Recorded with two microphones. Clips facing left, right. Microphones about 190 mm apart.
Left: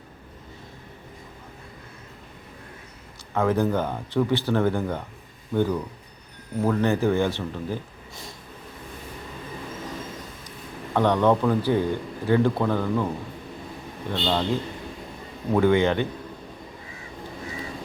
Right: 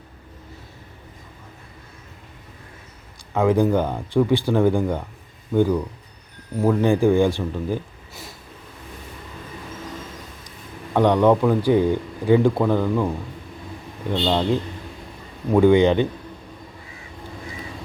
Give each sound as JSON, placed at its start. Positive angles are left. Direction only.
{"t": 3.3, "sound": "speech", "side_deg": -15}
{"t": 6.6, "sound": "speech", "side_deg": -10}
{"t": 10.9, "sound": "speech", "side_deg": -15}
{"t": 14.1, "sound": "speech", "side_deg": -10}
{"t": 15.5, "sound": "speech", "side_deg": -15}